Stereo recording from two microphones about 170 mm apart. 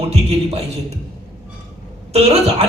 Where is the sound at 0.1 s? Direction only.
40° right (ahead or behind).